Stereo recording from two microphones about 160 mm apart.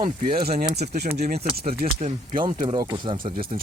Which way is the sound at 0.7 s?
85° right.